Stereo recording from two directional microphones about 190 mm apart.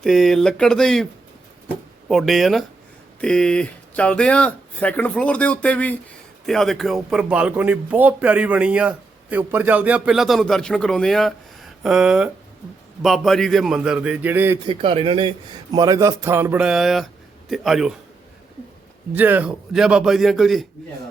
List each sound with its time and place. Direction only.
0.0 s a man's voice: centre (ahead or behind)
14.7 s a man's voice: 30° right (ahead or behind)
15.7 s a man's voice: 20° right (ahead or behind); by 17.9 s centre (ahead or behind)
19.1 s a man's voice: 10° right (ahead or behind)